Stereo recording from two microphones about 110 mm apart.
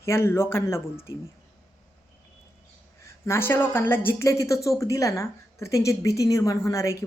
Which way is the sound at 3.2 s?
20° left (ahead or behind).